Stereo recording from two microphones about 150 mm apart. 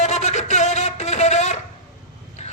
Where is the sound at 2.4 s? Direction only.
50° left (ahead or behind).